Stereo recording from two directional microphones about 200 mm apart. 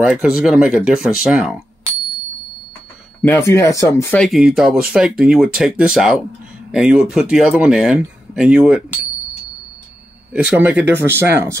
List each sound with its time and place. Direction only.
0.0 s speech: 5° right (ahead or behind)
3.2 s speech: 10° left (ahead or behind); by 8.8 s 5° right (ahead or behind)
10.3 s speech: 5° right (ahead or behind)